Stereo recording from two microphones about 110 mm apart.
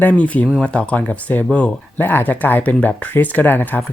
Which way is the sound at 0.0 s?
15° left (ahead or behind).